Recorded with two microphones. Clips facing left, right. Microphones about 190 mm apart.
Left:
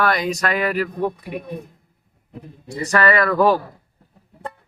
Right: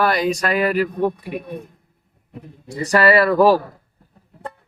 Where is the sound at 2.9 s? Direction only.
30° right (ahead or behind).